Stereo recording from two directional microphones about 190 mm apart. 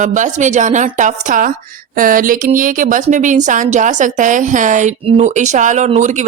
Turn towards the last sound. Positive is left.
turn(degrees=-40)  # may be behind; listen again after turning